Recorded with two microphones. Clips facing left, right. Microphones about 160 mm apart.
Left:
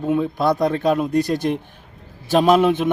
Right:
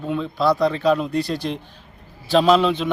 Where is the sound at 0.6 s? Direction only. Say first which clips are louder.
Even; 45° left (ahead or behind).